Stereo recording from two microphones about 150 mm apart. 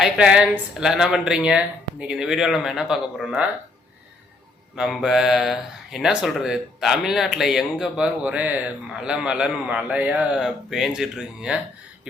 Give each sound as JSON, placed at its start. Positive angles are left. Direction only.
{"t": 0.0, "sound": "speech", "side_deg": -5}
{"t": 4.8, "sound": "speech", "side_deg": -5}